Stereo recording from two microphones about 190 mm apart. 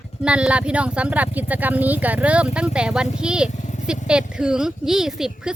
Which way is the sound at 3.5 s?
40° left (ahead or behind).